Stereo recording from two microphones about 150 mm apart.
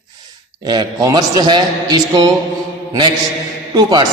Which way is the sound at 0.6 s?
30° right (ahead or behind).